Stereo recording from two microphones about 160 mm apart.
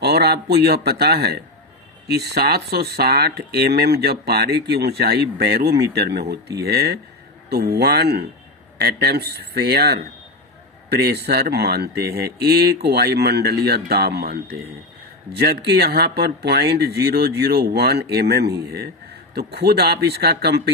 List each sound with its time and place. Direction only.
0.0 s speech: 90° right; by 14.6 s 75° right (ahead or behind)
15.3 s speech: 90° right